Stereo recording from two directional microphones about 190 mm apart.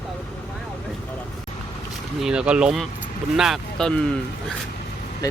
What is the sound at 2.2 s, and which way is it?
Speech, 5° right (ahead or behind).